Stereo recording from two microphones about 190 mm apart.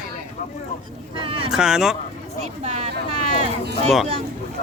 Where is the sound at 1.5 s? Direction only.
5° right (ahead or behind).